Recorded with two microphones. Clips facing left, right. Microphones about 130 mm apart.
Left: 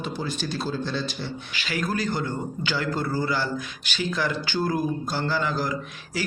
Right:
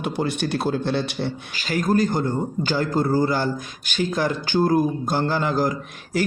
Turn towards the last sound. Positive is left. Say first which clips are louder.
# right 5 dB
turn(degrees=-50)  # may be behind; listen again after turning